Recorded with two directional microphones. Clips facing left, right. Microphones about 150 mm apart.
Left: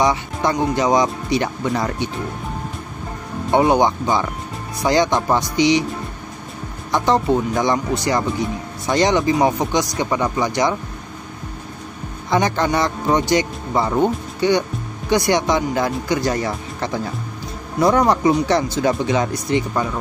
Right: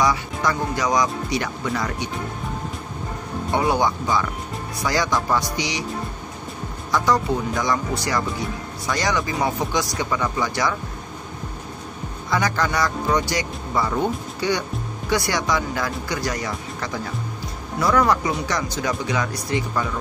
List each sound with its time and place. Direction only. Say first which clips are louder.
0.0 s speech: left 3 dB; 25° left (ahead or behind)
3.5 s speech: left 6 dB; 20° left (ahead or behind)
6.9 s speech: left 4 dB; 25° left (ahead or behind)
12.3 s speech: left 4 dB; 25° left (ahead or behind)